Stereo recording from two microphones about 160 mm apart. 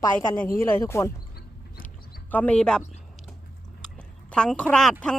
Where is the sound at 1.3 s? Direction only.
65° left (ahead or behind).